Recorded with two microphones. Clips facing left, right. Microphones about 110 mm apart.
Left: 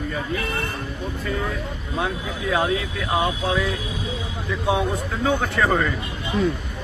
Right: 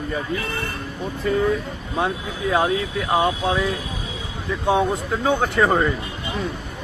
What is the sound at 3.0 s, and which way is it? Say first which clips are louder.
Speech: right 5 dB; 35° right (ahead or behind).